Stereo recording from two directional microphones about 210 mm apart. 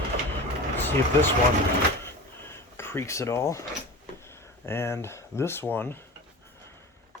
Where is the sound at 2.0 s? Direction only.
10° left (ahead or behind).